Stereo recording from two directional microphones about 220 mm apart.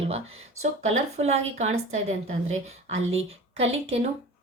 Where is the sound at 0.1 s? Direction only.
30° right (ahead or behind).